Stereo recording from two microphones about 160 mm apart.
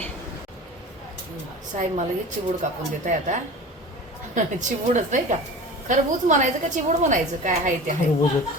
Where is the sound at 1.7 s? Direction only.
45° right (ahead or behind).